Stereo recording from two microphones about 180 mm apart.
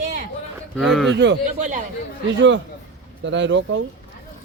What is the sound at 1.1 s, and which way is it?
Speech, 75° right (ahead or behind).